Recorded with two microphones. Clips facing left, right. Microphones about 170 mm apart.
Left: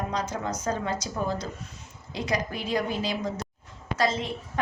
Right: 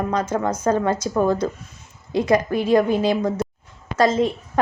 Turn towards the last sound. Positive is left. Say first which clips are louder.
# right 11 dB
turn(degrees=-50)  # may be behind; listen again after turning